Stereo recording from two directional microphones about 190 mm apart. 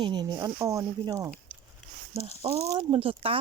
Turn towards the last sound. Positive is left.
turn(degrees=-30)  # may be behind; listen again after turning